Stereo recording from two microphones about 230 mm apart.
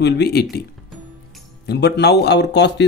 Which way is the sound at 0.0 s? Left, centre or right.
Left.